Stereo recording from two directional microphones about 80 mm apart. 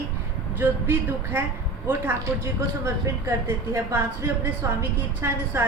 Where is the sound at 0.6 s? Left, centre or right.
Right.